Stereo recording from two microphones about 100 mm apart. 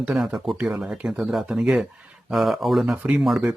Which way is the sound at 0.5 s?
5° right (ahead or behind).